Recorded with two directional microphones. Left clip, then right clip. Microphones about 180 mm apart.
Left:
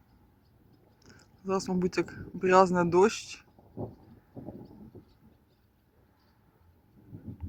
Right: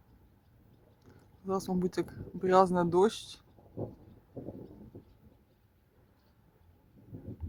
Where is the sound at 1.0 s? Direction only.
5° left (ahead or behind).